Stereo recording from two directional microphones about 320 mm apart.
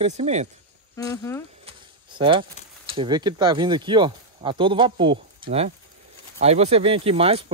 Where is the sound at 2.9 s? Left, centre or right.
Centre.